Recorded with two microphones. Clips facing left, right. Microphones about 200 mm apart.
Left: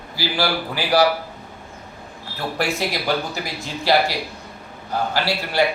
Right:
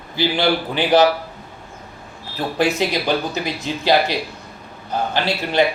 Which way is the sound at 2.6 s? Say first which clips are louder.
Right 5 dB; 20° right (ahead or behind).